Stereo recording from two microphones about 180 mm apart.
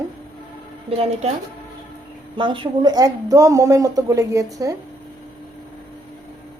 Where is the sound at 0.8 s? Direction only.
35° right (ahead or behind).